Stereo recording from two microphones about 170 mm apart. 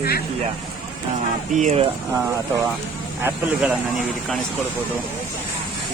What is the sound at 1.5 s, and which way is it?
Speech, 45° right (ahead or behind).